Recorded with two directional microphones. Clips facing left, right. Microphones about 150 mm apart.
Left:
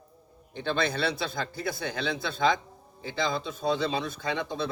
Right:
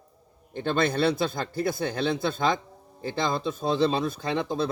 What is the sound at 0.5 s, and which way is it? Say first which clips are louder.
Speech: right 4 dB; 50° right (ahead or behind).